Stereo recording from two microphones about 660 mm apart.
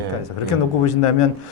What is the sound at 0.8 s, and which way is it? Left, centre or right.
Speech, left.